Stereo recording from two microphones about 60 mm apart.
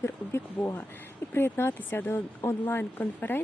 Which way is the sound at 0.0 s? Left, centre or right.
Left.